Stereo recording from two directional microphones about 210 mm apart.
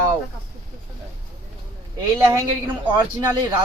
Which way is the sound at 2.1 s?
15° right (ahead or behind).